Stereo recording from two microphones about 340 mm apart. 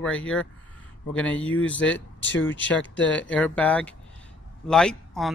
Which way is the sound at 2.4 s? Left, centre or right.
Left.